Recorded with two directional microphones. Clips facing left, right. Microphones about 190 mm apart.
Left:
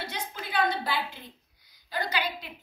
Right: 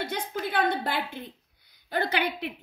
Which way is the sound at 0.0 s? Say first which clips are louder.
Right 6 dB; 55° right (ahead or behind).